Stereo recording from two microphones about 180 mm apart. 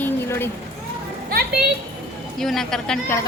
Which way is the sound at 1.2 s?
55° right (ahead or behind).